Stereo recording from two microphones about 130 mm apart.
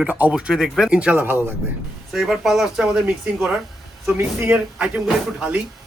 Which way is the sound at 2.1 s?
5° right (ahead or behind).